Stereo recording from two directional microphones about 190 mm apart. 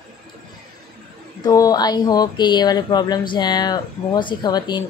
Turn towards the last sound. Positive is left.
turn(degrees=20)  # may be behind; listen again after turning